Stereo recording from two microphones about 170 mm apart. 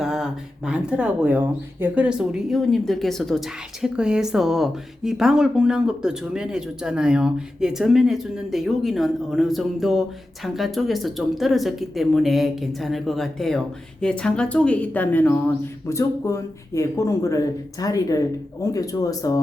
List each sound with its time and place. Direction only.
0.0 s speech: 5° right (ahead or behind); by 19.4 s 20° left (ahead or behind)